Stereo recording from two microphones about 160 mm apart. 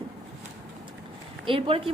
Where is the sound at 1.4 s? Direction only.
35° right (ahead or behind).